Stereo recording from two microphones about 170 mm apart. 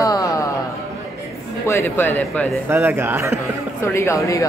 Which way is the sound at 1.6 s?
15° left (ahead or behind).